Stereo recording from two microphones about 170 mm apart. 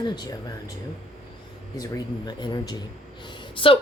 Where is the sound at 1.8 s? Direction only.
20° left (ahead or behind).